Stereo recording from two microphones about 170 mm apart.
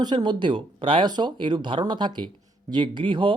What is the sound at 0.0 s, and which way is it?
Speech, 25° right (ahead or behind).